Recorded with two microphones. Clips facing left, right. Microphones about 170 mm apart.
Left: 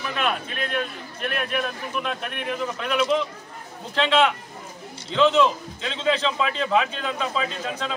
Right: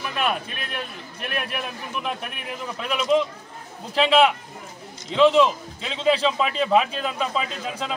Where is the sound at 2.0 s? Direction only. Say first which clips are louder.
Left 2 dB; 5° right (ahead or behind).